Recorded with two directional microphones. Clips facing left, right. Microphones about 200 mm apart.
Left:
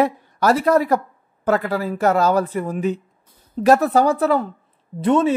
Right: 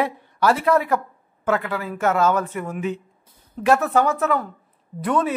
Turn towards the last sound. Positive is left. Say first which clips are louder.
# left 5 dB
turn(degrees=25)  # may be behind; listen again after turning